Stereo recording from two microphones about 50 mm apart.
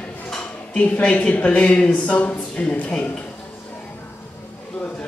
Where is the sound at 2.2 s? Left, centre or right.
Left.